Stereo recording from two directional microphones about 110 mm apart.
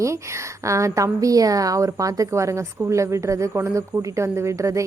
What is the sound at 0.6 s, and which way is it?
A woman's voice, 30° right (ahead or behind).